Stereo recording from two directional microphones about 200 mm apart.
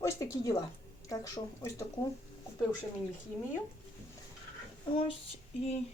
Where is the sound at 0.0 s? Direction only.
15° left (ahead or behind).